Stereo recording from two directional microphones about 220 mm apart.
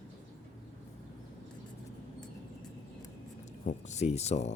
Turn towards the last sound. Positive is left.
turn(degrees=30)  # may be behind; listen again after turning